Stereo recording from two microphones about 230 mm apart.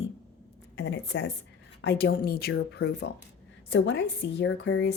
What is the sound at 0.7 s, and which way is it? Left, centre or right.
Speech, left.